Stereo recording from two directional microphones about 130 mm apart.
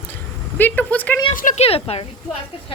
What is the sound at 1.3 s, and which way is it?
Speech, 90° left.